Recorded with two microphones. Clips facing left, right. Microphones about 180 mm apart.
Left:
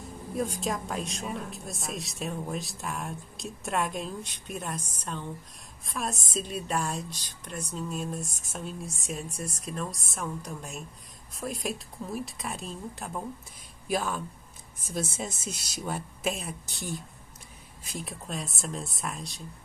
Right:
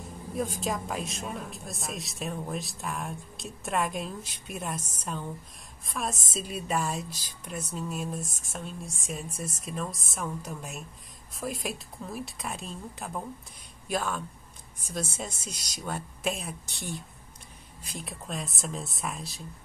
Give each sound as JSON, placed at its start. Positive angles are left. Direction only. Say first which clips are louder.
{"t": 0.0, "sound": "a woman's voice", "louder": "left 1 dB", "side_deg": 0}